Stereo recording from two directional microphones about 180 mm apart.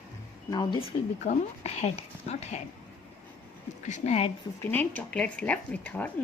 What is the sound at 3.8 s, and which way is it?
Speech, 40° left (ahead or behind).